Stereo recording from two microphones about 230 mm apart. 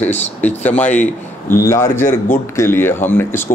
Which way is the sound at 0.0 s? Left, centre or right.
Centre.